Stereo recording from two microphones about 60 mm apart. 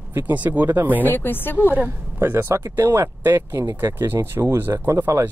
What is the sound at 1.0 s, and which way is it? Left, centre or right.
Speech, left.